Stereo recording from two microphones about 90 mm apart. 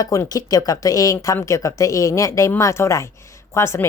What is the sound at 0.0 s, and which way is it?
Speech, 40° left (ahead or behind).